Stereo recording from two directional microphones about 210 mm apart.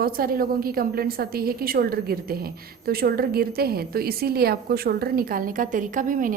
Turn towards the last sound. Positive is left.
turn(degrees=-40)  # may be behind; listen again after turning